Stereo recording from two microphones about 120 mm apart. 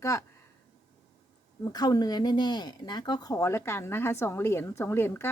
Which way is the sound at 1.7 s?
35° left (ahead or behind).